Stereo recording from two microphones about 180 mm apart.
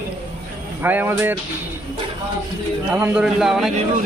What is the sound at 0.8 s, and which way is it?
Speech, 10° right (ahead or behind).